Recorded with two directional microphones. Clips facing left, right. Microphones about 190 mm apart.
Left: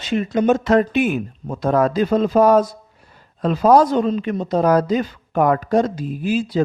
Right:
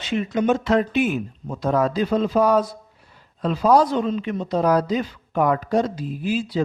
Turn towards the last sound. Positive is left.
turn(degrees=45)  # may be behind; listen again after turning